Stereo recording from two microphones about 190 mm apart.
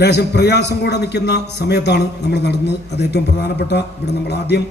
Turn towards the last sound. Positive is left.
turn(degrees=60)  # may be behind; listen again after turning